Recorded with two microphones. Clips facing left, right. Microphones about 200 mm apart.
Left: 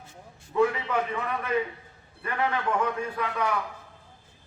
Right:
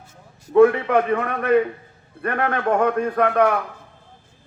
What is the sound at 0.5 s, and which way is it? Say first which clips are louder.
A man's voice: right 10 dB; 60° right (ahead or behind).